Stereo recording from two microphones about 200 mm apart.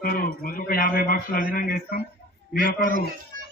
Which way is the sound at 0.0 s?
45° left (ahead or behind).